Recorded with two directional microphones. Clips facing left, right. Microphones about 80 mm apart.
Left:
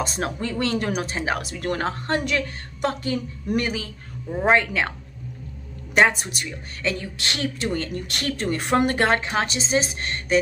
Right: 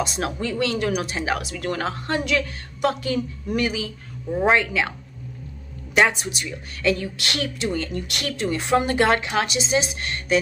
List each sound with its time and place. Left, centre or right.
0.0 s speech: left
4.3 s speech: centre
4.6 s speech: left
5.9 s speech: left
7.5 s speech: left